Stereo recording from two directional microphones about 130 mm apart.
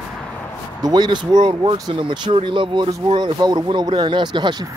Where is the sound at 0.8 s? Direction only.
30° right (ahead or behind).